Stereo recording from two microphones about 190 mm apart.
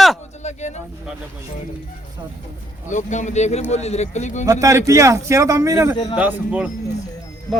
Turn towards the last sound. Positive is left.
turn(degrees=0)  # may be behind; listen again after turning